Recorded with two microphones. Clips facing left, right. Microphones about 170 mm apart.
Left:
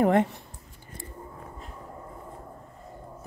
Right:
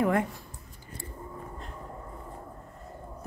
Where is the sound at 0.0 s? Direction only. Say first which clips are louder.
Left 4 dB; 25° left (ahead or behind).